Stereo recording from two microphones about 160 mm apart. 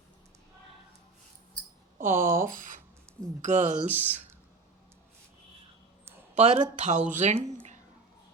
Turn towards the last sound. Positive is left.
turn(degrees=-45)  # may be behind; listen again after turning